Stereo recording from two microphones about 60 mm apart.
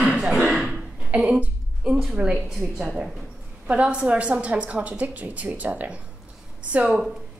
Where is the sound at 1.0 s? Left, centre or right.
Right.